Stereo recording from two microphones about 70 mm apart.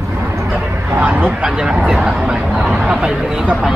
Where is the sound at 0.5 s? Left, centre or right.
Right.